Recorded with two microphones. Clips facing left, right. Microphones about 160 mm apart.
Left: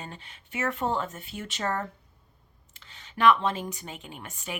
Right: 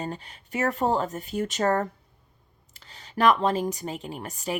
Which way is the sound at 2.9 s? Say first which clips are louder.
Right 1 dB; 40° right (ahead or behind).